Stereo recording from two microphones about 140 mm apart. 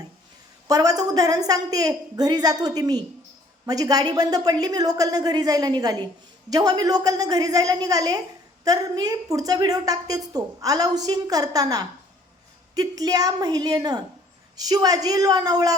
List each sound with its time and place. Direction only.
0.7 s a woman's voice: 25° right (ahead or behind)